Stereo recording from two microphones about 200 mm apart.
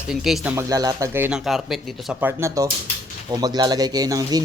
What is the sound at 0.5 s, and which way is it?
Speech, 15° right (ahead or behind).